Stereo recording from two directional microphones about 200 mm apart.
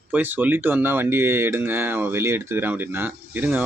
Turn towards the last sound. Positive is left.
turn(degrees=-10)  # may be behind; listen again after turning